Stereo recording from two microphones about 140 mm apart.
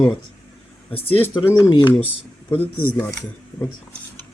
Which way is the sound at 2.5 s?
15° left (ahead or behind).